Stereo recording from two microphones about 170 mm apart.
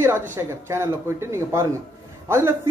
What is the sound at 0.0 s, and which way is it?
Speech, 15° right (ahead or behind).